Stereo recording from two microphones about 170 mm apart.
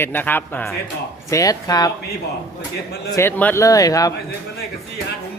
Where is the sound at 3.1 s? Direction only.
10° left (ahead or behind).